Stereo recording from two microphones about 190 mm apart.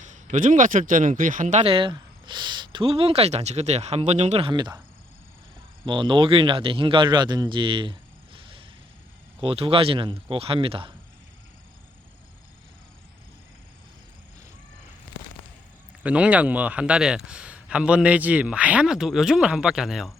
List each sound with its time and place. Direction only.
0.0 s speech: 40° right (ahead or behind); by 4.8 s 25° right (ahead or behind)
5.8 s a man's voice: 25° right (ahead or behind)
16.0 s a man's voice: 5° right (ahead or behind)